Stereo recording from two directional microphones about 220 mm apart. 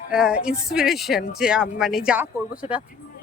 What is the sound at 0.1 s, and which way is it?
Speech, 5° right (ahead or behind).